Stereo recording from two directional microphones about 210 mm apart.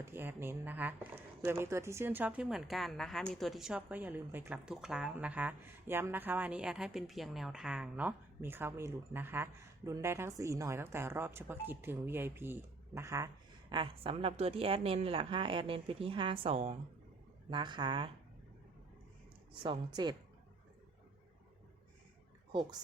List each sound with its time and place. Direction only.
0.0 s speech: 10° right (ahead or behind)
19.6 s speech: 20° right (ahead or behind)